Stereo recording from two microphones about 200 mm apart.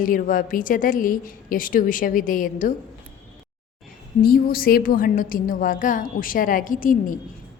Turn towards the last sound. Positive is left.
turn(degrees=40)  # may be behind; listen again after turning